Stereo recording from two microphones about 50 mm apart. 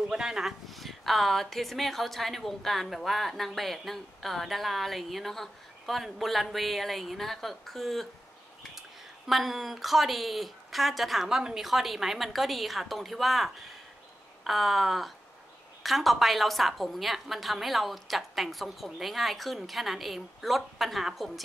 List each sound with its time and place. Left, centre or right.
0.1 s speech: centre
0.7 s speech: centre
9.3 s speech: centre